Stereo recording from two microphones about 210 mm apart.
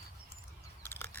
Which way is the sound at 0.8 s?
10° left (ahead or behind).